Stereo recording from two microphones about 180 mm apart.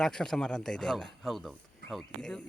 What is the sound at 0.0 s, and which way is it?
Speech, 5° left (ahead or behind).